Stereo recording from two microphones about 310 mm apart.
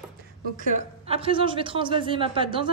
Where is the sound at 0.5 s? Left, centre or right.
Right.